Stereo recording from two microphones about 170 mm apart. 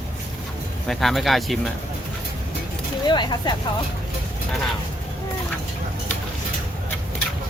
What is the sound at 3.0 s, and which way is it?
Speech, 25° left (ahead or behind).